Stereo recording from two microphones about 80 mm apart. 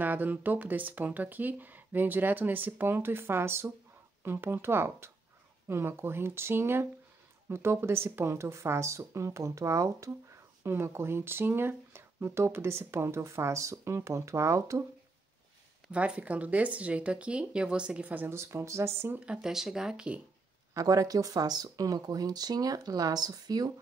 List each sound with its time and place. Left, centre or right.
0.0 s speech: right
15.9 s speech: centre
18.3 s speech: right
19.1 s speech: centre
20.7 s speech: right